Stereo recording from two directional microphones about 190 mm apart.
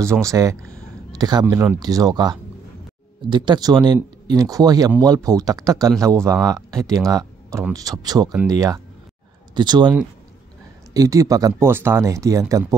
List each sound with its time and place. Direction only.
0.0 s speech: 15° right (ahead or behind)